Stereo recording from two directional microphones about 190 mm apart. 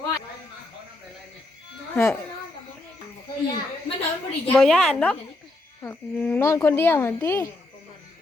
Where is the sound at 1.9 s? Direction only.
10° left (ahead or behind).